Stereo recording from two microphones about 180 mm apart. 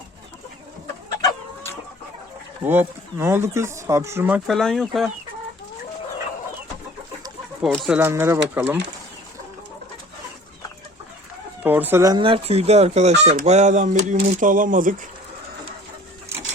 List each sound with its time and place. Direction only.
1.2 s chicken: 15° left (ahead or behind)
2.6 s speech: 15° right (ahead or behind)
4.4 s speech: centre (ahead or behind)
7.6 s speech: centre (ahead or behind)
7.9 s speech: 10° right (ahead or behind)
11.6 s speech: 10° right (ahead or behind); by 14.9 s 45° right (ahead or behind)